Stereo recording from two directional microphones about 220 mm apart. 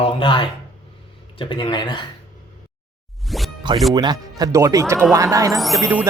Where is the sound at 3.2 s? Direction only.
Centre (ahead or behind).